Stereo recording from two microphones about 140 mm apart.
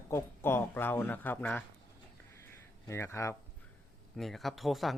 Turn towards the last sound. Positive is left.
turn(degrees=0)  # may be behind; listen again after turning